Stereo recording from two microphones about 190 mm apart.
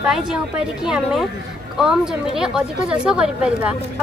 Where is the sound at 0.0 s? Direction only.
Centre (ahead or behind).